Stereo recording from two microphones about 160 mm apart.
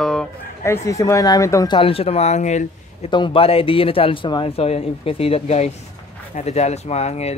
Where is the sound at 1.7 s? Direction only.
35° left (ahead or behind).